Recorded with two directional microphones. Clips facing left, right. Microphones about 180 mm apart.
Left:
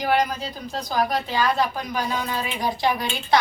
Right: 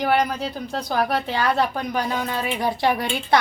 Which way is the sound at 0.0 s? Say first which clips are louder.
Right 1 dB; 60° right (ahead or behind).